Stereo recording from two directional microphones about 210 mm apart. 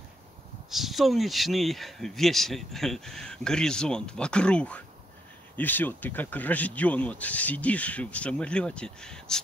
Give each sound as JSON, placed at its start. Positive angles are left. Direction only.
{"t": 0.7, "sound": "speech", "side_deg": 0}